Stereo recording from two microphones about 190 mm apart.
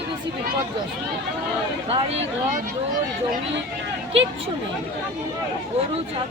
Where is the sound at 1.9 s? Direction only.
30° right (ahead or behind).